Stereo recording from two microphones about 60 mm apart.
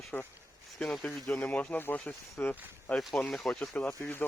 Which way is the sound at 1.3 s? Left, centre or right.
Left.